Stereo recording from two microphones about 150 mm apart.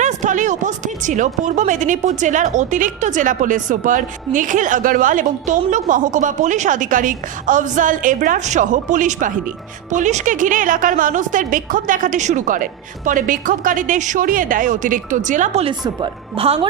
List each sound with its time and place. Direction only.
0.0 s a woman's voice: 55° right (ahead or behind)
15.8 s a woman's voice: 35° right (ahead or behind)